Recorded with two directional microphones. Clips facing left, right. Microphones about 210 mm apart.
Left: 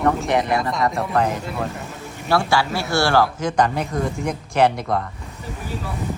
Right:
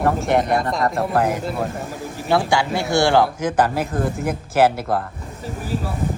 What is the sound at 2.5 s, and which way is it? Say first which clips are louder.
A man's voice: right 1 dB; 15° right (ahead or behind).